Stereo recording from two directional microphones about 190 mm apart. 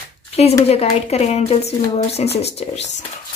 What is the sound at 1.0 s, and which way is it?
Speech, 35° left (ahead or behind).